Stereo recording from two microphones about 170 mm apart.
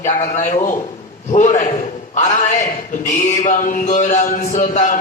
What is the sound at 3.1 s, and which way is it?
A man's voice, 45° left (ahead or behind).